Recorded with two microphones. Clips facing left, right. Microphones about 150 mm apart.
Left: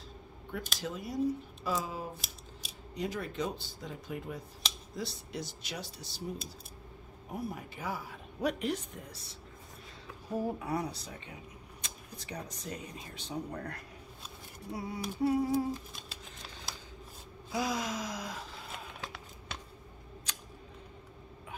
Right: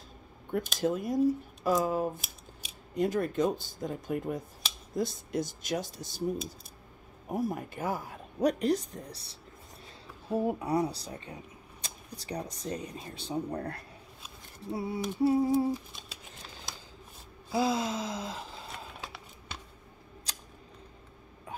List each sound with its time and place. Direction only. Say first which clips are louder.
0.7 s speech: right 7 dB; 50° right (ahead or behind)
7.2 s a woman's voice: right 7 dB; 45° right (ahead or behind)
10.3 s a woman's voice: right 5 dB; 25° right (ahead or behind)
15.7 s a sound: right 4 dB; centre (ahead or behind)
17.5 s gasp: right 5 dB; 30° right (ahead or behind)
20.3 s scissors: right 2 dB; 35° right (ahead or behind)